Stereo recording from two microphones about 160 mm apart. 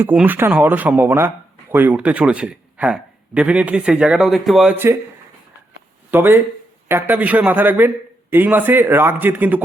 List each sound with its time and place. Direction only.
0.0 s speech: 10° right (ahead or behind)
6.1 s speech: 15° right (ahead or behind)